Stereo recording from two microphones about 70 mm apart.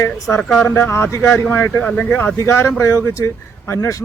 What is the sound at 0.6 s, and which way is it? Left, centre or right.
Speech, left.